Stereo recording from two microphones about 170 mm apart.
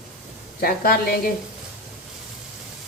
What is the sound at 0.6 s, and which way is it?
Speech, 60° left (ahead or behind).